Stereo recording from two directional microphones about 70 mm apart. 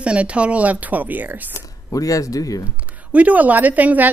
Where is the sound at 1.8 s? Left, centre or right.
Left.